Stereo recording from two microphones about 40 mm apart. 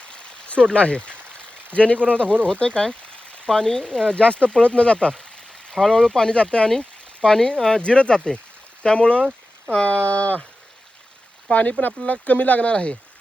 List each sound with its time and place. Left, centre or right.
0.0 s a sound: left
1.7 s speech: left
2.2 s speech: right
2.5 s a sound: left
3.5 s speech: centre
10.1 s speech: left
11.5 s speech: left